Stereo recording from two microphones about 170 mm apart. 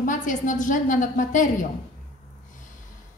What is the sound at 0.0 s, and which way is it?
A woman's voice, 50° left (ahead or behind).